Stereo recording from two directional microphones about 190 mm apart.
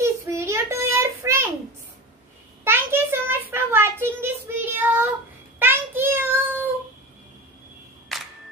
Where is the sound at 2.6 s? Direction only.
10° right (ahead or behind).